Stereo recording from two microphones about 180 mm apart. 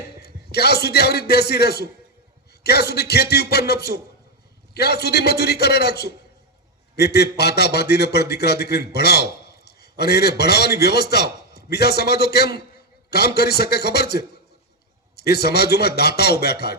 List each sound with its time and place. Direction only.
0.2 s a man's voice: 65° left (ahead or behind)